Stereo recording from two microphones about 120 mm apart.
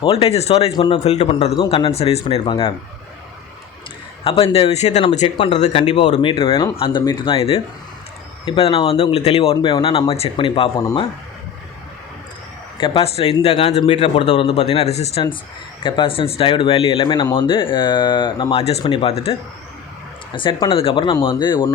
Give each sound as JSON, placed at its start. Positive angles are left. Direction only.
{"t": 0.0, "sound": "speech", "side_deg": 50}
{"t": 1.1, "sound": "speech", "side_deg": 65}
{"t": 2.4, "sound": "speech", "side_deg": 45}
{"t": 4.2, "sound": "speech", "side_deg": 50}
{"t": 9.6, "sound": "speech", "side_deg": 40}
{"t": 12.8, "sound": "speech", "side_deg": 50}
{"t": 15.8, "sound": "speech", "side_deg": 45}
{"t": 18.5, "sound": "speech", "side_deg": 55}
{"t": 20.3, "sound": "speech", "side_deg": 45}
{"t": 21.0, "sound": "speech", "side_deg": 35}